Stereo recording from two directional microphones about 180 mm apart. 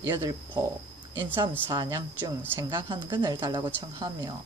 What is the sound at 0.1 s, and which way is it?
Speech, 25° right (ahead or behind).